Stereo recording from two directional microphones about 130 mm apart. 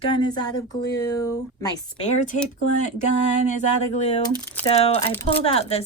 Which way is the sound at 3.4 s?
70° left (ahead or behind).